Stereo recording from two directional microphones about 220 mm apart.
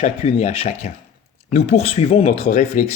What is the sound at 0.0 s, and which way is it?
Speech, 25° left (ahead or behind).